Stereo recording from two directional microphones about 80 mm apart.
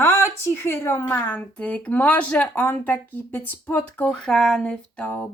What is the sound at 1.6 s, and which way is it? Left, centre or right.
A woman's voice, centre.